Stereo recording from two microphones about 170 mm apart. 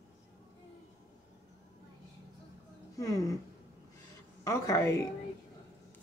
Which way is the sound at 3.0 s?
20° left (ahead or behind).